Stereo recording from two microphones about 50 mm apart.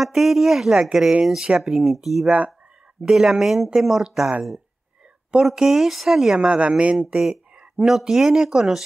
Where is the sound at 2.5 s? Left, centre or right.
Right.